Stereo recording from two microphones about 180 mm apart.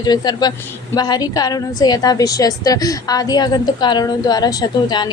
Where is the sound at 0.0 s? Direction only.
20° left (ahead or behind).